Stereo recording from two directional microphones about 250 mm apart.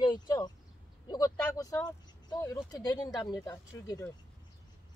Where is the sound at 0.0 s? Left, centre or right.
Centre.